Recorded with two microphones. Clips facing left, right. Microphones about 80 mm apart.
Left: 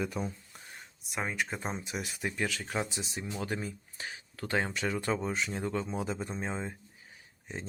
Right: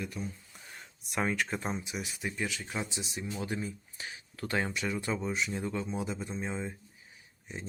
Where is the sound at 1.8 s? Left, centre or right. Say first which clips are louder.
Left 1 dB; left.